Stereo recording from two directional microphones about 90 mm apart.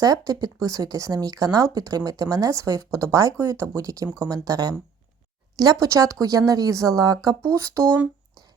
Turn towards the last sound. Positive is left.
turn(degrees=-35)  # may be behind; listen again after turning